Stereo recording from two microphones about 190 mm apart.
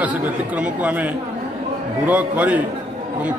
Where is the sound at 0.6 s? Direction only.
10° right (ahead or behind).